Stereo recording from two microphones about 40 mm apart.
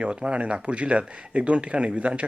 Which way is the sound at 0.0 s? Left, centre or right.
Right.